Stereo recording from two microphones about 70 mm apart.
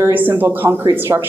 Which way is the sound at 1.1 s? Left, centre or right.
Right.